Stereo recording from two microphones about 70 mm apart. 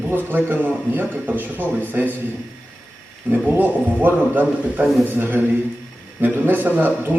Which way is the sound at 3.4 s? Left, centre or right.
Right.